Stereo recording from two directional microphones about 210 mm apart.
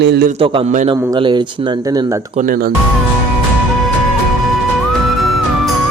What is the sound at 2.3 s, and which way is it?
Speech, 40° right (ahead or behind).